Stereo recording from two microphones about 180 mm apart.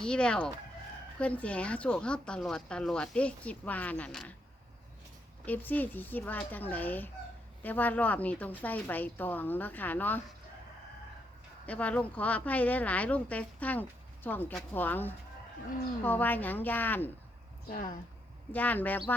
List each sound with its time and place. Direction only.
0.0 s chicken: 5° left (ahead or behind)
1.2 s speech: 5° left (ahead or behind)
5.5 s speech: 10° left (ahead or behind)
11.6 s speech: 10° left (ahead or behind)
17.7 s speech: 50° left (ahead or behind)
18.5 s speech: 10° left (ahead or behind)